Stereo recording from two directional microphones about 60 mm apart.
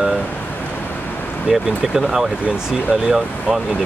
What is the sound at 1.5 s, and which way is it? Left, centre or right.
Speech, centre.